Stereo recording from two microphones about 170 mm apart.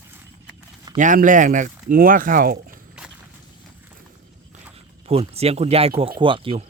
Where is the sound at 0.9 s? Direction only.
50° right (ahead or behind).